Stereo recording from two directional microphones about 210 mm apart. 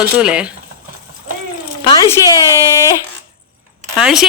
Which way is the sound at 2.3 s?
15° right (ahead or behind).